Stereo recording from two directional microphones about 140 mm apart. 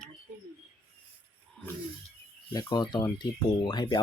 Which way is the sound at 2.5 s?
30° left (ahead or behind).